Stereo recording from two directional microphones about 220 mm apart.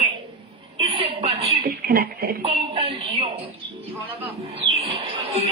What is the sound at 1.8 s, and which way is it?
Speech, 45° right (ahead or behind).